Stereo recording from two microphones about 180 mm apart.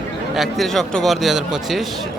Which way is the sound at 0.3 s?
Centre (ahead or behind).